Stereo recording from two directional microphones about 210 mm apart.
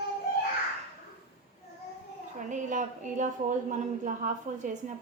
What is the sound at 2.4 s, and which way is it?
A woman's voice, 35° right (ahead or behind).